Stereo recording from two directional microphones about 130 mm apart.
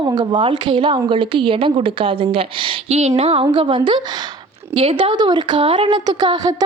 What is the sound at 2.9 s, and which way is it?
A woman's voice, 55° right (ahead or behind).